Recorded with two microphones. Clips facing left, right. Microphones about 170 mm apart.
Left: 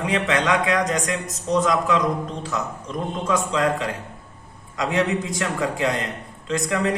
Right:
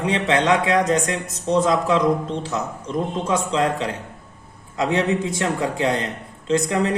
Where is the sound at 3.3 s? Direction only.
25° right (ahead or behind).